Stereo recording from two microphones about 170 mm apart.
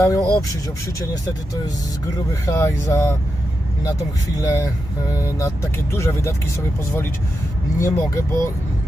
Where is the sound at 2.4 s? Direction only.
15° left (ahead or behind).